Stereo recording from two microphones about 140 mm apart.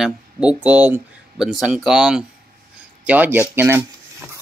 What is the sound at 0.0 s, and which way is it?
Speech, 10° right (ahead or behind).